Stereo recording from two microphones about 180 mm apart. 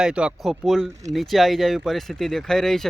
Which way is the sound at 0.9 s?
20° right (ahead or behind).